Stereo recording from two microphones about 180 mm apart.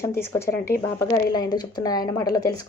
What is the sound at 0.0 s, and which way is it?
A woman's voice, 15° left (ahead or behind).